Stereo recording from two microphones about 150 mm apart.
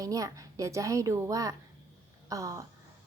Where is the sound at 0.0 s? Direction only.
25° right (ahead or behind).